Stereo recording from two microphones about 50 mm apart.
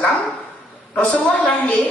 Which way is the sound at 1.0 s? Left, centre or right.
Left.